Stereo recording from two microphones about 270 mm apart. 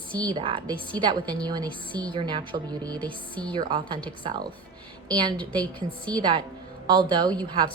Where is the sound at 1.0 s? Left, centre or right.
Centre.